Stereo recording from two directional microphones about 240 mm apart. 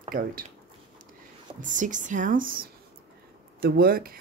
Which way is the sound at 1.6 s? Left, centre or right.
Right.